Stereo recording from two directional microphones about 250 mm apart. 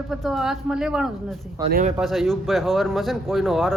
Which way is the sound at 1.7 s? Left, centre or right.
Right.